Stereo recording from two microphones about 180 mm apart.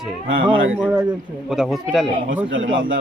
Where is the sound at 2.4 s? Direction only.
90° right.